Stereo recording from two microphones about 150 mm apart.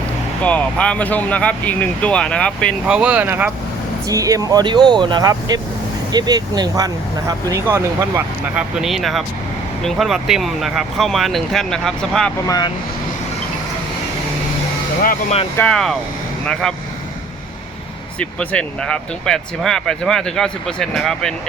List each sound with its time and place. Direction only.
0.4 s speech: 10° left (ahead or behind)
2.8 s speech: 5° right (ahead or behind)
4.1 s speech: 25° right (ahead or behind)
8.5 s speech: 5° right (ahead or behind)
12.5 s speech: 25° left (ahead or behind)
15.5 s speech: 5° left (ahead or behind)
18.2 s speech: 10° left (ahead or behind)